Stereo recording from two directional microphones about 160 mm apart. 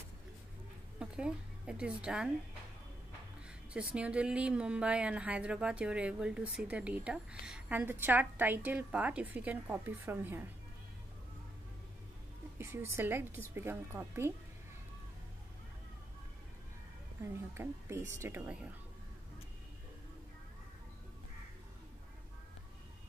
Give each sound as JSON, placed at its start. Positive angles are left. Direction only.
{"t": 0.9, "sound": "a woman's voice", "side_deg": -5}
{"t": 3.7, "sound": "speech", "side_deg": -5}
{"t": 12.5, "sound": "speech", "side_deg": -15}
{"t": 17.2, "sound": "speech", "side_deg": -15}